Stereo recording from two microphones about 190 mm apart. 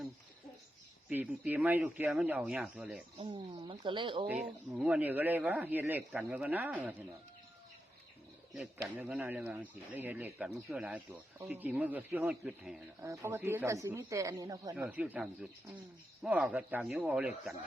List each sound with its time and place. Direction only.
1.1 s a man's voice: 10° right (ahead or behind)
3.2 s speech: 25° right (ahead or behind)
4.3 s a man's voice: 5° right (ahead or behind)
8.5 s a man's voice: centre (ahead or behind)
13.0 s a man's voice: 15° right (ahead or behind)
14.8 s speech: 5° right (ahead or behind)